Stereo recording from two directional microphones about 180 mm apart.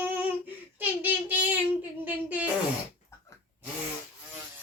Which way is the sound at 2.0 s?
10° right (ahead or behind).